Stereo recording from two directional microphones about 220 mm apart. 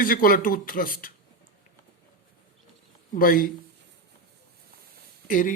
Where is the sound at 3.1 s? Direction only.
40° left (ahead or behind).